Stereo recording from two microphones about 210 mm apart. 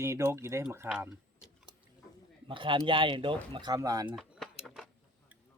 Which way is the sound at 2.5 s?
25° right (ahead or behind).